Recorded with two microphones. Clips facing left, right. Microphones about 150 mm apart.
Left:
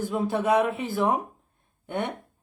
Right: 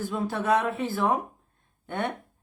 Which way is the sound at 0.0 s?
15° left (ahead or behind).